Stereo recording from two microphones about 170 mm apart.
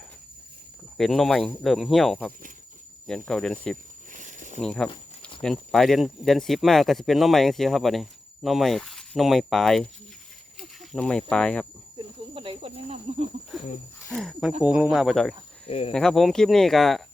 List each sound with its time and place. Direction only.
0.9 s speech: centre (ahead or behind)
4.1 s a sound: 45° right (ahead or behind)
4.6 s speech: 5° left (ahead or behind)
11.9 s snake: 30° right (ahead or behind)
14.1 s speech: centre (ahead or behind)
15.6 s speech: 35° left (ahead or behind)
15.9 s speech: 5° left (ahead or behind)